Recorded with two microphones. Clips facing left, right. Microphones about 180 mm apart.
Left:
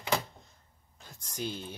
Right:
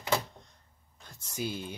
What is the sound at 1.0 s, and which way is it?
Whispering, 5° right (ahead or behind).